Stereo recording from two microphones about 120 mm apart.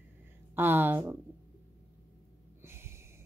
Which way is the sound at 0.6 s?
20° right (ahead or behind).